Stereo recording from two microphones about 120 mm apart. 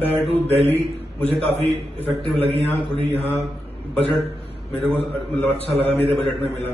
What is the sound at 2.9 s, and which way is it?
Mantra, 55° right (ahead or behind).